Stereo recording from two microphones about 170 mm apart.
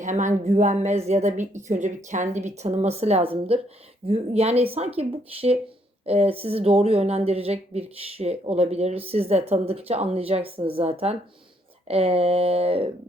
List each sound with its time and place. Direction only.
0.0 s speech: 45° right (ahead or behind)